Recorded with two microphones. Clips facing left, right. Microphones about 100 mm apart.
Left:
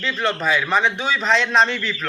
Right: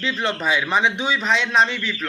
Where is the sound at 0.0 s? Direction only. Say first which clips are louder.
Left 1 dB; 20° right (ahead or behind).